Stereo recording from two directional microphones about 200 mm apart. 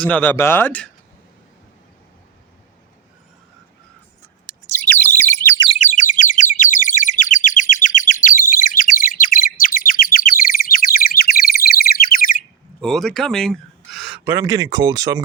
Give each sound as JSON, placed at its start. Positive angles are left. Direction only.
{"t": 0.0, "sound": "speech", "side_deg": 10}
{"t": 4.6, "sound": "bird", "side_deg": 10}
{"t": 5.6, "sound": "bird", "side_deg": 30}
{"t": 12.8, "sound": "a sound", "side_deg": 5}
{"t": 14.3, "sound": "speech", "side_deg": -15}